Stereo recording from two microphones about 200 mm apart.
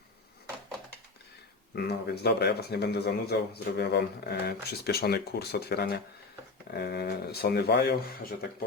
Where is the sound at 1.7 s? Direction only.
55° left (ahead or behind).